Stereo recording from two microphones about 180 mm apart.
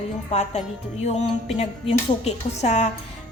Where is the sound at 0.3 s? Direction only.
40° left (ahead or behind).